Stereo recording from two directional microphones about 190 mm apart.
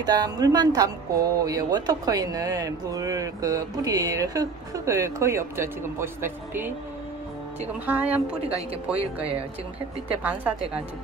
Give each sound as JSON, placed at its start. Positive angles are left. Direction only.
{"t": 0.0, "sound": "speech", "side_deg": -20}
{"t": 7.8, "sound": "a woman's voice", "side_deg": -10}
{"t": 9.0, "sound": "speech", "side_deg": -30}
{"t": 10.2, "sound": "a woman's voice", "side_deg": -10}